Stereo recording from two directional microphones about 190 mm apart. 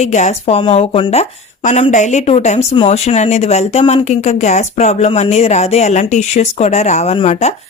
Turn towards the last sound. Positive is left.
turn(degrees=35)  # may be behind; listen again after turning